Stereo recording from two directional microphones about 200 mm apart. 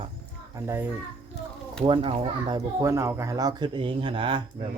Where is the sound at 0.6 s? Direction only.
15° right (ahead or behind).